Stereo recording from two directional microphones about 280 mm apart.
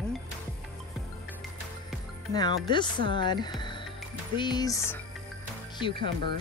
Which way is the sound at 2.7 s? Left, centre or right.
Centre.